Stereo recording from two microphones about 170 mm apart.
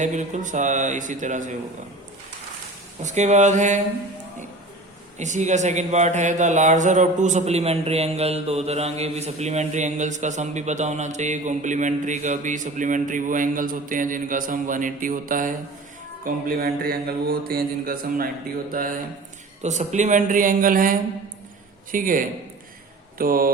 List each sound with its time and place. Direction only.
0.0 s speech: 45° right (ahead or behind)
3.0 s speech: 45° right (ahead or behind)
5.1 s speech: 45° right (ahead or behind)
16.2 s mantra: 60° right (ahead or behind)
19.6 s speech: 45° right (ahead or behind)
21.9 s speech: 55° right (ahead or behind)
23.1 s a sound: 55° right (ahead or behind)